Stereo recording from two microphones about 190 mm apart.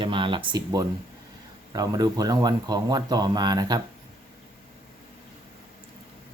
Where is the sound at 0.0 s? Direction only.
25° right (ahead or behind).